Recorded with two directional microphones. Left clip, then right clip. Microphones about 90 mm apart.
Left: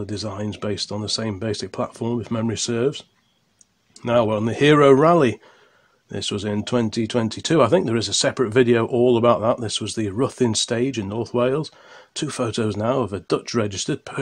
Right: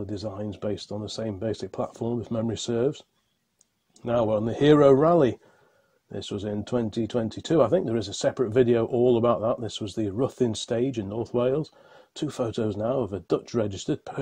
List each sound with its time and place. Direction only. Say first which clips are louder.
0.0 s speech: left 4 dB; 10° right (ahead or behind)
6.1 s speech: left 6 dB; centre (ahead or behind); by 14.2 s 20° right (ahead or behind)